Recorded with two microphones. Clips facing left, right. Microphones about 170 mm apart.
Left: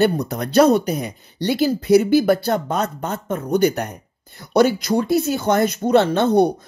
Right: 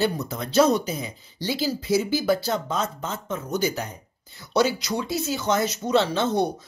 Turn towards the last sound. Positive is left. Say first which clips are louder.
# left 7 dB
turn(degrees=60)  # may be behind; listen again after turning